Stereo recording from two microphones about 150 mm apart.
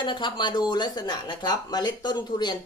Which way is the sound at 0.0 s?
30° left (ahead or behind).